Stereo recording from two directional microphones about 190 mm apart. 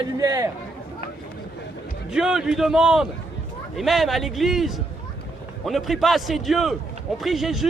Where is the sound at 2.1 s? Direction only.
5° right (ahead or behind).